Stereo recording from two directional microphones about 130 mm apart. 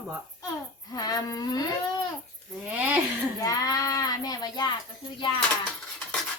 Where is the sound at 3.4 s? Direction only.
25° left (ahead or behind).